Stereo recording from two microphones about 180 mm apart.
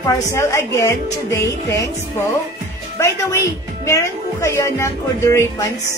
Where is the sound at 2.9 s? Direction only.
15° left (ahead or behind).